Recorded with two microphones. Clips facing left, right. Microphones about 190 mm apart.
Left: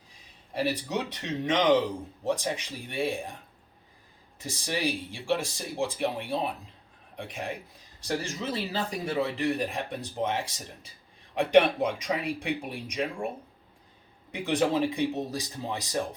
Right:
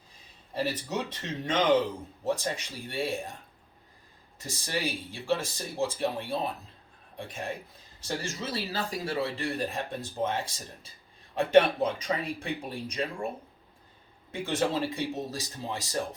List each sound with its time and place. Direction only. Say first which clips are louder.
0.5 s speech: left 2 dB; 15° left (ahead or behind)
4.4 s speech: left 2 dB; 15° left (ahead or behind)
14.3 s speech: left 3 dB; 15° left (ahead or behind)